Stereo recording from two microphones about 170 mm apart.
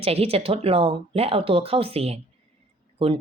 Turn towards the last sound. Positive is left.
turn(degrees=-30)  # may be behind; listen again after turning